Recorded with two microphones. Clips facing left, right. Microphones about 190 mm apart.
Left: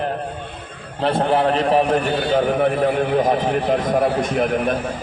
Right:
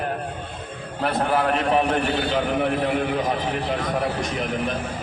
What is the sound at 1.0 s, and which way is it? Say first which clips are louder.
A man's voice: left 4 dB; 30° left (ahead or behind).